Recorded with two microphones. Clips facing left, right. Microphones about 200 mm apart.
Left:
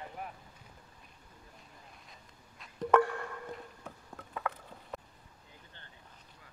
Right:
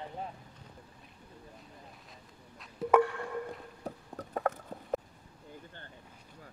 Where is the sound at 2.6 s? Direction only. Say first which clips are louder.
Right 1 dB; 10° right (ahead or behind).